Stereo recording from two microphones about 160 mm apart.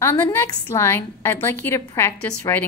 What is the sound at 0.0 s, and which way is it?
A woman's voice, 15° left (ahead or behind).